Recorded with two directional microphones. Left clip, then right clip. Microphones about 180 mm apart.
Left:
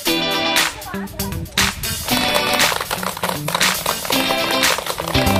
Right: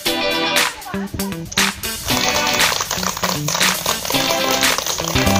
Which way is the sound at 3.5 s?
Centre (ahead or behind).